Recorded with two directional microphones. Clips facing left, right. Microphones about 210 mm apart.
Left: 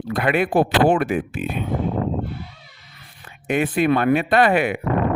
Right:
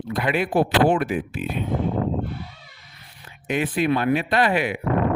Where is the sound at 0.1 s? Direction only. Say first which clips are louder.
Left 3 dB; 55° left (ahead or behind).